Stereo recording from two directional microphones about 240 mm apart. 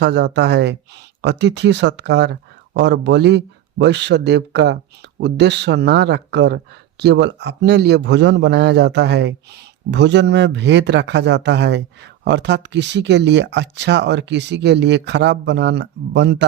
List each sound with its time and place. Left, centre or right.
0.0 s speech: right